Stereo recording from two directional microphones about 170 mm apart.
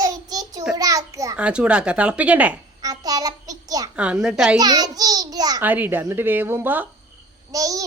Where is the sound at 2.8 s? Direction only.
20° right (ahead or behind).